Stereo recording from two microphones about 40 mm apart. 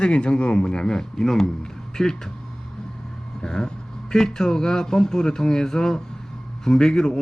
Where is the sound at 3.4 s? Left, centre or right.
Centre.